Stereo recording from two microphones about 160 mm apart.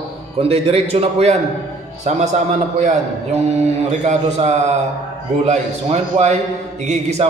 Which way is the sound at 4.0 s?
45° right (ahead or behind).